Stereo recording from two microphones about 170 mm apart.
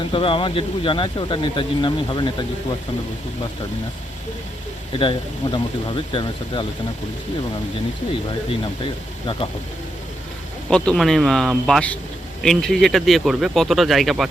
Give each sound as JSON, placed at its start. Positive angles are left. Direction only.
{"t": 0.1, "sound": "speech", "side_deg": 30}
{"t": 4.9, "sound": "speech", "side_deg": 30}
{"t": 8.3, "sound": "speech", "side_deg": 30}
{"t": 10.7, "sound": "speech", "side_deg": 5}